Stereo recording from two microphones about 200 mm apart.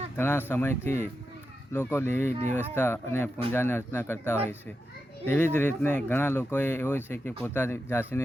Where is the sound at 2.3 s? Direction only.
35° right (ahead or behind).